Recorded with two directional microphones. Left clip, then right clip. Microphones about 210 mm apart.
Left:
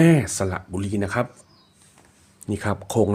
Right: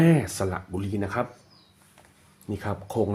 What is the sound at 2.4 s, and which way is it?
Speech, 40° left (ahead or behind).